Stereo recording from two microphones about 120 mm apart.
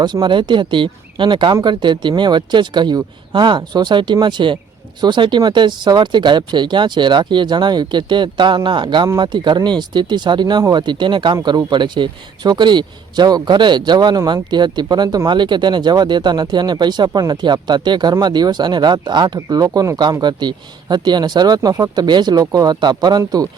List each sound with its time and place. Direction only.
0.0 s speech: 40° right (ahead or behind)